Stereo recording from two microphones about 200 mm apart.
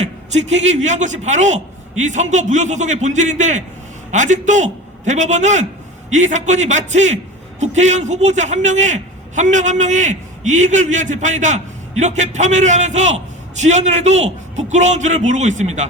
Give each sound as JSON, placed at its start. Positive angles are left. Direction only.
{"t": 0.0, "sound": "a man's voice", "side_deg": -35}